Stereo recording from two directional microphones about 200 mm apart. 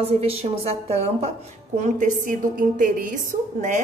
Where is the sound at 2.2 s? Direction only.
40° right (ahead or behind).